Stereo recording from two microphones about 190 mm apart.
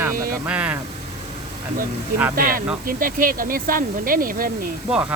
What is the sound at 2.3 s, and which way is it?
Speech, 50° right (ahead or behind).